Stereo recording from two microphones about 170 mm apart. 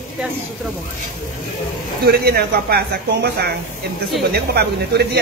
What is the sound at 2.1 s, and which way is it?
A woman's voice, 70° right (ahead or behind).